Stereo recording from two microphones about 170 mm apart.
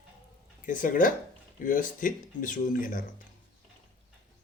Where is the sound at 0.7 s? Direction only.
50° left (ahead or behind).